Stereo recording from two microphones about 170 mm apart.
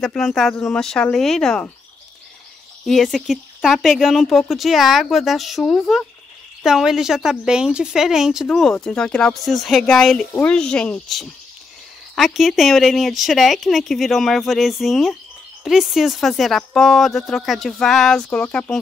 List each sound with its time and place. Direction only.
0.0 s speech: 5° left (ahead or behind)
2.8 s speech: centre (ahead or behind)